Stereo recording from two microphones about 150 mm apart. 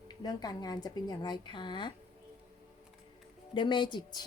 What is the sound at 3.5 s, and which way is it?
Speech, 30° left (ahead or behind).